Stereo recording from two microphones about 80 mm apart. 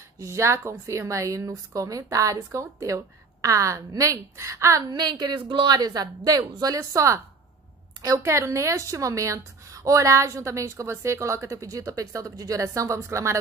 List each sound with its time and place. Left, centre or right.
0.2 s a woman's voice: right
4.9 s speech: right
5.8 s a woman's voice: right